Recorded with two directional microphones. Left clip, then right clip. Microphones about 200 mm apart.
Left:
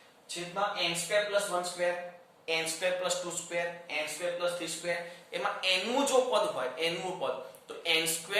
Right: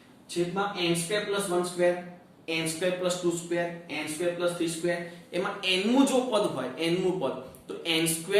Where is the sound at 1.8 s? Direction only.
15° left (ahead or behind).